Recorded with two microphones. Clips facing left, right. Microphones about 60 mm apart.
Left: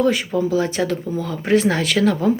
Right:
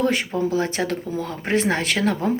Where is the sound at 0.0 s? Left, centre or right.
Right.